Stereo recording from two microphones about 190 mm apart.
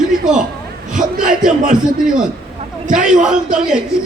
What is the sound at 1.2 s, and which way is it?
Speech, 45° right (ahead or behind).